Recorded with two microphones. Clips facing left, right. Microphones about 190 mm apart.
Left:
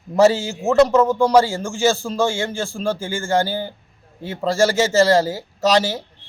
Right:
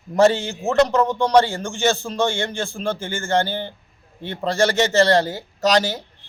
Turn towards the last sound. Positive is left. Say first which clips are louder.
# left 1 dB
turn(degrees=5)  # may be behind; listen again after turning